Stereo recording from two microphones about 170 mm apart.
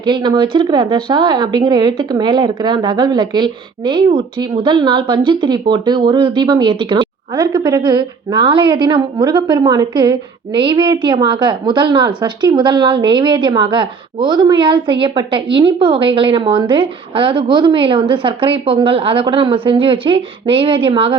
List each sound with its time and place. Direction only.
0.0 s a woman's voice: 25° right (ahead or behind)